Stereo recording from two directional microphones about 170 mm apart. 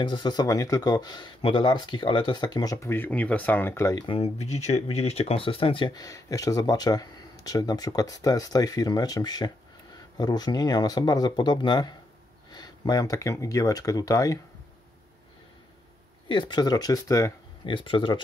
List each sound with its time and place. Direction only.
0.0 s speech: 25° left (ahead or behind)
16.3 s speech: 25° left (ahead or behind)
17.7 s speech: 30° left (ahead or behind)